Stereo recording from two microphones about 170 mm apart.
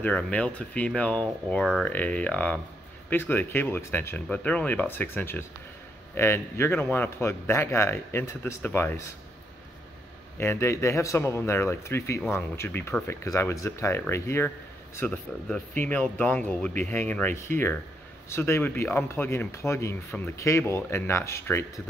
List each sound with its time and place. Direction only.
0.0 s a man's voice: 5° left (ahead or behind)
10.3 s a man's voice: 15° left (ahead or behind)